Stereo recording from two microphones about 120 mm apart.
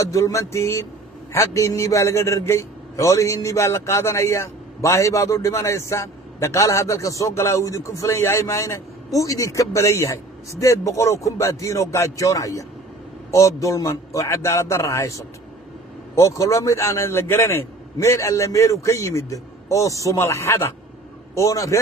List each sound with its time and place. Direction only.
0.0 s a man's voice: 25° left (ahead or behind)
16.2 s a man's voice: 25° left (ahead or behind)